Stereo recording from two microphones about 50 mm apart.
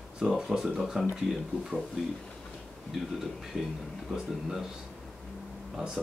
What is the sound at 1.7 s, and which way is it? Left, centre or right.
Speech, right.